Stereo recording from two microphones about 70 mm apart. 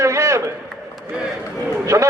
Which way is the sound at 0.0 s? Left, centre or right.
Right.